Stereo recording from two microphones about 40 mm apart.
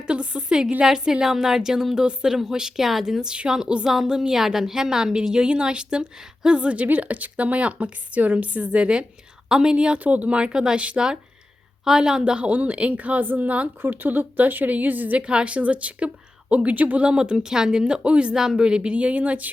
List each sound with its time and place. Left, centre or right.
0.1 s a woman's voice: right
0.8 s a woman's voice: centre
1.3 s a woman's voice: centre
3.2 s a woman's voice: centre
6.8 s speech: right
8.8 s a woman's voice: centre
10.0 s speech: right
10.2 s a woman's voice: right
10.8 s speech: right
11.9 s a woman's voice: centre
12.5 s speech: right
13.8 s speech: right
15.2 s a woman's voice: right
17.0 s a woman's voice: right